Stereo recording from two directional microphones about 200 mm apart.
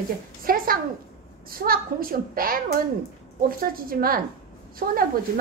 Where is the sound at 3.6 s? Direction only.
45° right (ahead or behind).